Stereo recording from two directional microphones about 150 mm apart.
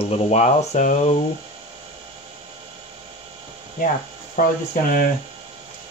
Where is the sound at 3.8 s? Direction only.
70° left (ahead or behind).